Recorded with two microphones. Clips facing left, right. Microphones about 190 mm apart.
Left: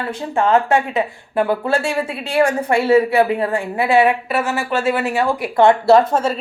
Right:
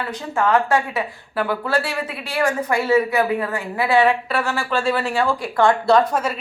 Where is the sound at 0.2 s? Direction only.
25° left (ahead or behind).